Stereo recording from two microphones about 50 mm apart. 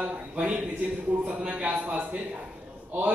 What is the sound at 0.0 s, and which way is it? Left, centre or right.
Speech, right.